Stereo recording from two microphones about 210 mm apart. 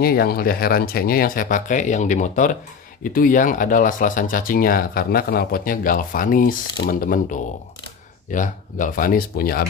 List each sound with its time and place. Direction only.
0.0 s speech: 45° left (ahead or behind)